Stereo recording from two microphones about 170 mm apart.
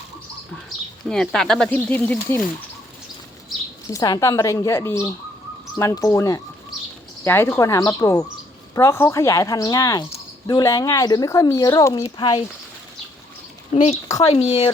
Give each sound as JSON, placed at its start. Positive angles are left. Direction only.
{"t": 1.0, "sound": "speech", "side_deg": 0}
{"t": 3.8, "sound": "speech", "side_deg": 20}
{"t": 13.7, "sound": "speech", "side_deg": 40}